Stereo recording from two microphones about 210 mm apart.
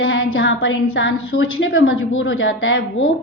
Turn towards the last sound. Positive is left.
turn(degrees=70)  # may be behind; listen again after turning